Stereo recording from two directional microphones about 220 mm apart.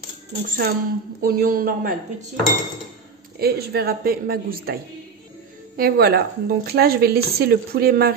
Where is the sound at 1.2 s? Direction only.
40° right (ahead or behind).